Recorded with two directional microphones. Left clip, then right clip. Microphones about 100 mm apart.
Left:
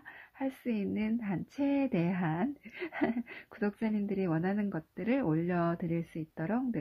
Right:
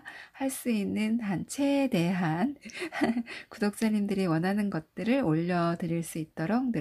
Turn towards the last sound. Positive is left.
turn(degrees=-20)  # may be behind; listen again after turning